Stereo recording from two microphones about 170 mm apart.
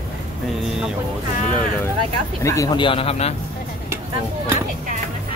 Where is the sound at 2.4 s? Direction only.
20° left (ahead or behind); by 3.3 s 35° left (ahead or behind).